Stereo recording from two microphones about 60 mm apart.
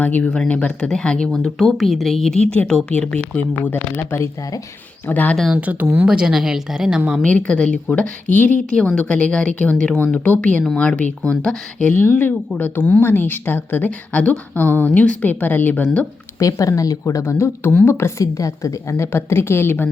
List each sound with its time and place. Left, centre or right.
0.0 s a woman's voice: left; by 2.4 s centre
2.4 s speech: centre
3.3 s speech: left
5.0 s a woman's voice: left
5.5 s speech: right
6.1 s a woman's voice: centre
7.3 s a woman's voice: centre
16.4 s a woman's voice: left